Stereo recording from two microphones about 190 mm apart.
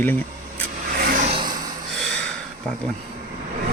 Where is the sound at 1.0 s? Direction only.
45° right (ahead or behind).